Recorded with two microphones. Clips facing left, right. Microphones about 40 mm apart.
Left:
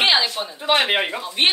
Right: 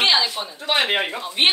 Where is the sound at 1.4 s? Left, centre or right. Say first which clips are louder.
Right 1 dB; centre.